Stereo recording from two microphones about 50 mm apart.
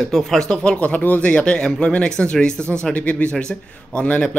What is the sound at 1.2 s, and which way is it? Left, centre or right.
Speech, left.